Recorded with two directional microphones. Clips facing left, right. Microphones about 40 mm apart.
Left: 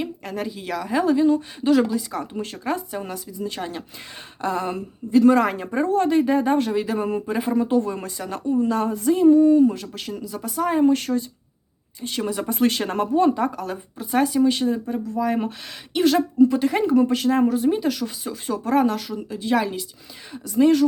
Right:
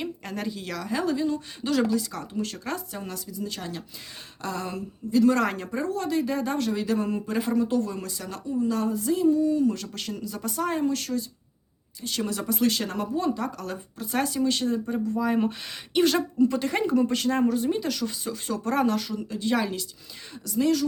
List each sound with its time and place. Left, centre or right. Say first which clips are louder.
0.0 s speech: left 4 dB; centre; by 5.3 s left
5.3 s speech: left 6 dB; centre
5.7 s speech: left 12 dB; left
9.6 s speech: left 3 dB; centre
10.8 s speech: left 8 dB; left
12.0 s speech: left 4 dB; centre
12.5 s speech: left 4 dB; left
13.6 s speech: left 4 dB; centre
20.5 s speech: left 7 dB; left